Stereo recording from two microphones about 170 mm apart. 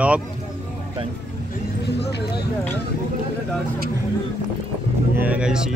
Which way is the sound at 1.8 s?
75° left (ahead or behind).